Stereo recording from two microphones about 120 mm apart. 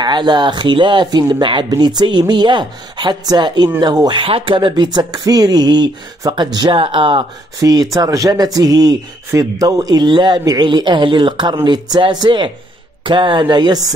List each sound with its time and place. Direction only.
0.0 s speech: 40° right (ahead or behind)
7.6 s speech: 30° right (ahead or behind)